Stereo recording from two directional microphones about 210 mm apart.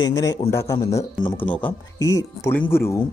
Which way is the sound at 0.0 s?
15° left (ahead or behind).